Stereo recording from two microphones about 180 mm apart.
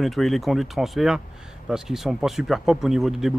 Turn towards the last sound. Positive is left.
turn(degrees=0)  # may be behind; listen again after turning